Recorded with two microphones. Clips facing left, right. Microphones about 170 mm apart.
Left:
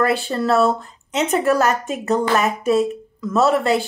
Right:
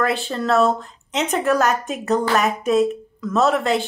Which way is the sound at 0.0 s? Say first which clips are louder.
Left 3 dB; 5° left (ahead or behind).